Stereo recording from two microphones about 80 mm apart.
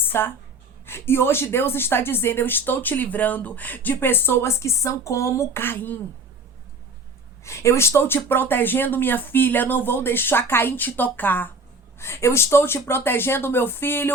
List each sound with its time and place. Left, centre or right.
0.0 s speech: left
7.4 s speech: left
11.9 s speech: left